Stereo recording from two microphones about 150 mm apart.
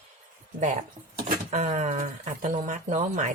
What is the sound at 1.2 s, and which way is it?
Speech, 60° right (ahead or behind).